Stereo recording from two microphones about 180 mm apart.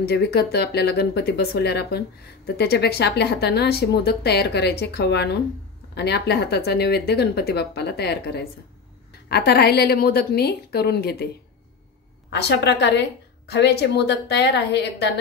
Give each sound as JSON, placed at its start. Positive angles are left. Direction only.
{"t": 0.0, "sound": "speech", "side_deg": 65}
{"t": 12.3, "sound": "a woman's voice", "side_deg": 70}